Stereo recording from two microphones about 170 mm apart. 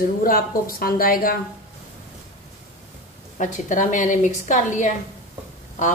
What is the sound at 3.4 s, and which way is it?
A woman's voice, 50° left (ahead or behind).